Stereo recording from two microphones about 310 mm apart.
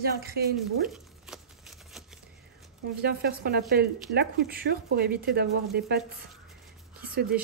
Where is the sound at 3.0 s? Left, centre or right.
Right.